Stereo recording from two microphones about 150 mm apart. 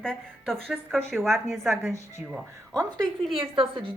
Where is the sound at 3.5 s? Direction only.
40° right (ahead or behind).